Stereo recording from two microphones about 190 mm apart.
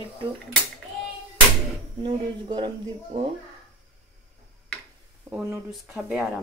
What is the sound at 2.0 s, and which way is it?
Speech, 25° right (ahead or behind).